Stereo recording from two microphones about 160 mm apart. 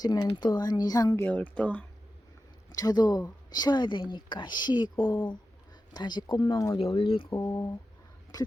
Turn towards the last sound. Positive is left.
turn(degrees=15)  # may be behind; listen again after turning